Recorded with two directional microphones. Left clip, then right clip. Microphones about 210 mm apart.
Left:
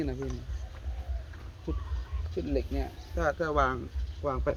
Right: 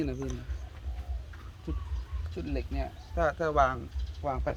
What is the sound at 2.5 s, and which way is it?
Speech, 55° right (ahead or behind).